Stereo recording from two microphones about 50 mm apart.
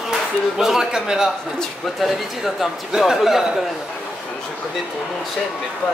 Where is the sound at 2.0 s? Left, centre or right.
Centre.